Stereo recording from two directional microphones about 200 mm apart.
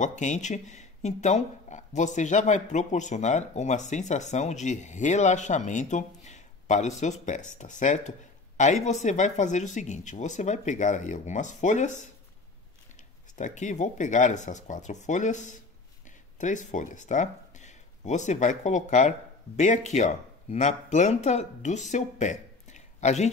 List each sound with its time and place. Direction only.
0.0 s speech: 40° left (ahead or behind)
13.4 s speech: 35° left (ahead or behind)